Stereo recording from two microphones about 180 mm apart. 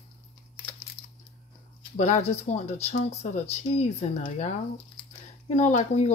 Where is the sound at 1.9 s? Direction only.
40° left (ahead or behind).